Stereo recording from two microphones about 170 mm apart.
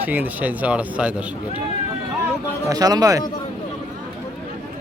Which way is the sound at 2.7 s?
20° right (ahead or behind).